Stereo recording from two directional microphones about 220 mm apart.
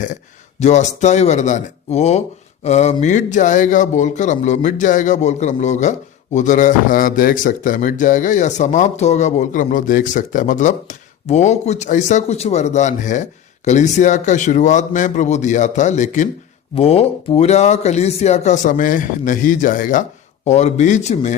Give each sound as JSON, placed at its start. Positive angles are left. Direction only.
{"t": 0.6, "sound": "speech", "side_deg": 30}